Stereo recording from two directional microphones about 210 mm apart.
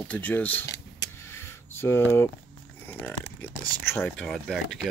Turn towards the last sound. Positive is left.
turn(degrees=0)  # may be behind; listen again after turning